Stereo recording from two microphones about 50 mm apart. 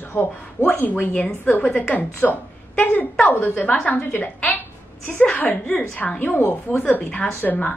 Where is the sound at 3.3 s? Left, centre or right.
Left.